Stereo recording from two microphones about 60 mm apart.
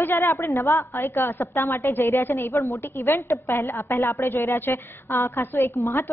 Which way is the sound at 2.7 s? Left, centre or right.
Left.